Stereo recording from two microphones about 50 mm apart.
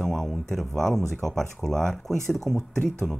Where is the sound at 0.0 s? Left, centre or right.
Centre.